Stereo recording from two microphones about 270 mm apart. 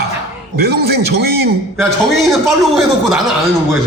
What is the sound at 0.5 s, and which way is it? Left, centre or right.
Speech, right.